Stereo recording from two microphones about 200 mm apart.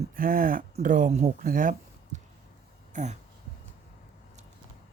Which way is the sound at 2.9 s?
35° right (ahead or behind).